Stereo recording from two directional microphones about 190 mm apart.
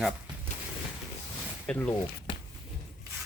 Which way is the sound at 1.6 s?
5° left (ahead or behind).